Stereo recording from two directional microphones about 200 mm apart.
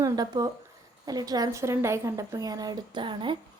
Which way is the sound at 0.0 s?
20° right (ahead or behind).